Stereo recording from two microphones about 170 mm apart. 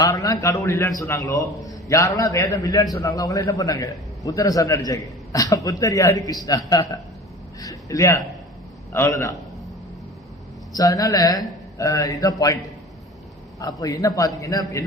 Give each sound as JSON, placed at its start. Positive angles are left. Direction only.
{"t": 0.0, "sound": "a man's voice", "side_deg": 20}
{"t": 10.7, "sound": "a man's voice", "side_deg": 20}
{"t": 13.6, "sound": "a man's voice", "side_deg": 20}